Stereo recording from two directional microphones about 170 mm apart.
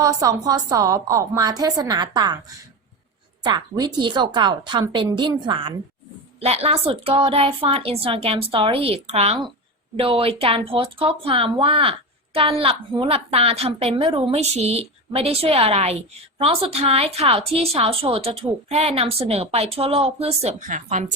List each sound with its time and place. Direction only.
0.0 s a woman's voice: 20° right (ahead or behind)
3.4 s a woman's voice: 25° right (ahead or behind); by 21.2 s 45° right (ahead or behind)